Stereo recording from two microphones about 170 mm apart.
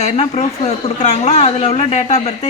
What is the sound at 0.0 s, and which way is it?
A man's voice, 40° left (ahead or behind).